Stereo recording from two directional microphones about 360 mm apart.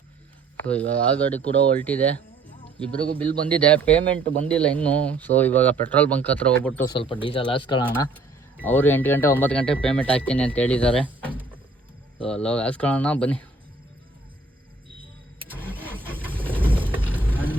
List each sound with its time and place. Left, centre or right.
0.5 s speech: centre
7.9 s speech: centre
15.5 s vehicle: centre